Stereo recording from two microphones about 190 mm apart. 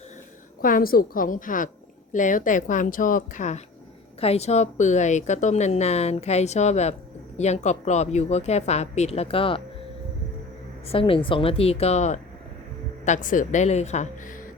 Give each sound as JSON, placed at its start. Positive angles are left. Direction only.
{"t": 0.6, "sound": "a woman's voice", "side_deg": 50}
{"t": 10.8, "sound": "a woman's voice", "side_deg": 30}